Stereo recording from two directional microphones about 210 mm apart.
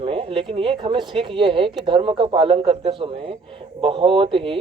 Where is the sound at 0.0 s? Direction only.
25° right (ahead or behind).